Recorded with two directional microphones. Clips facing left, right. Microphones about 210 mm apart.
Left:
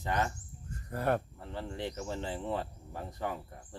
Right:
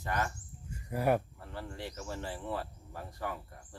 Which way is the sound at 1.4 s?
20° left (ahead or behind).